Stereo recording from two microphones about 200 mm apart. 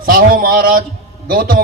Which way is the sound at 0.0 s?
45° right (ahead or behind).